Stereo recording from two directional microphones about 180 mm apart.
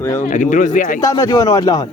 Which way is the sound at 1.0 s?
20° left (ahead or behind).